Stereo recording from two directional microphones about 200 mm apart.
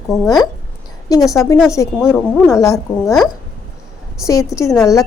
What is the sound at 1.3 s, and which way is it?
Speech, 15° left (ahead or behind).